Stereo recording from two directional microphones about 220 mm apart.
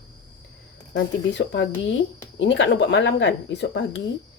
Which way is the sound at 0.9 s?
55° left (ahead or behind).